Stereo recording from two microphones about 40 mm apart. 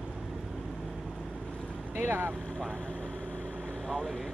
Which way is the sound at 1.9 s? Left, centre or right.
Right.